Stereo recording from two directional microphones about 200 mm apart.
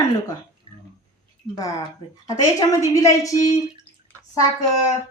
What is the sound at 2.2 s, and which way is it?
A woman's voice, 15° left (ahead or behind).